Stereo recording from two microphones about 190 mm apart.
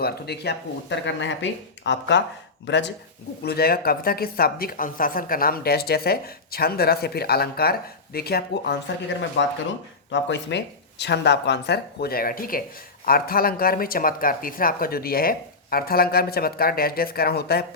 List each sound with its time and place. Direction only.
0.0 s speech: 60° left (ahead or behind)
3.4 s a woman's voice: 55° left (ahead or behind)
9.4 s a woman's voice: 70° left (ahead or behind)